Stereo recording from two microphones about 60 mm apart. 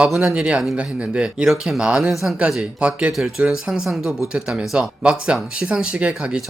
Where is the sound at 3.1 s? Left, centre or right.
Centre.